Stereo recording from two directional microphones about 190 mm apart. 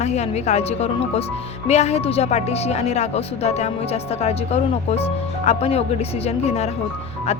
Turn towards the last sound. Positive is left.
turn(degrees=35)  # may be behind; listen again after turning